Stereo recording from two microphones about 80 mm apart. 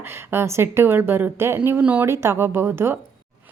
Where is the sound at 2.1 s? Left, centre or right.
Right.